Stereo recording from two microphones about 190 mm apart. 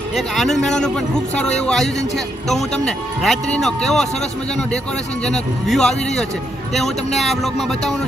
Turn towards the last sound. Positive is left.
turn(degrees=0)  # may be behind; listen again after turning